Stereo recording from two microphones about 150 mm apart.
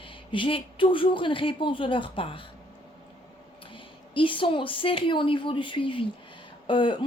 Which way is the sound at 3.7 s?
35° left (ahead or behind).